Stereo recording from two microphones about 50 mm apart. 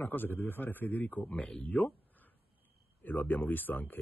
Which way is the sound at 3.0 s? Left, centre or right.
Left.